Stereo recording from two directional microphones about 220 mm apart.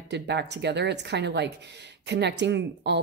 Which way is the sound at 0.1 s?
50° right (ahead or behind).